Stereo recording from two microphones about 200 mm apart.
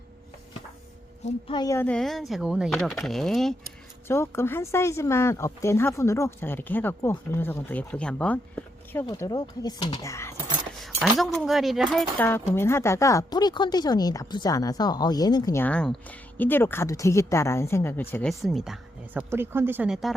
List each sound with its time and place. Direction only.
1.2 s speech: 25° left (ahead or behind); by 3.5 s centre (ahead or behind)
4.1 s speech: 10° left (ahead or behind)
9.0 s speech: 15° left (ahead or behind)
10.8 s keys jangling: centre (ahead or behind)
11.2 s speech: centre (ahead or behind)